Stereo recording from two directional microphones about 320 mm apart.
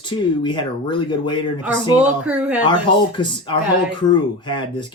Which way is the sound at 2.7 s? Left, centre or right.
Centre.